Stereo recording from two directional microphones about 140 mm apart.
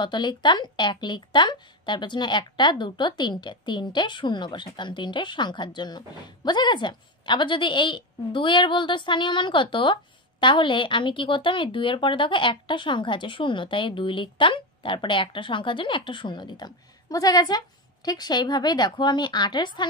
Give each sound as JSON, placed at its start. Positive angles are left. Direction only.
{"t": 0.0, "sound": "a woman's voice", "side_deg": 35}